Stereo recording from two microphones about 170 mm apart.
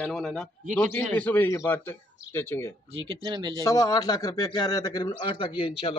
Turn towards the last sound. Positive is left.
turn(degrees=30)  # may be behind; listen again after turning